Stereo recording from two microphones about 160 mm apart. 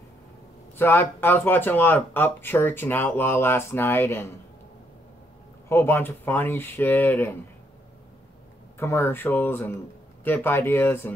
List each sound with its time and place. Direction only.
0.7 s speech: 15° left (ahead or behind)
5.7 s speech: 15° left (ahead or behind)
8.7 s speech: 15° left (ahead or behind)